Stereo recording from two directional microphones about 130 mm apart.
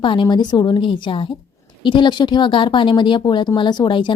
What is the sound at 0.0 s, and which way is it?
A woman's voice, 40° left (ahead or behind).